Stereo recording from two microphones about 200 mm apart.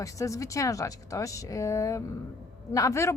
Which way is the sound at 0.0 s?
15° left (ahead or behind).